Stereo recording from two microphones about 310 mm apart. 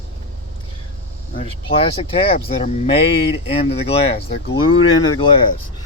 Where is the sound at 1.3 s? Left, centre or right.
Centre.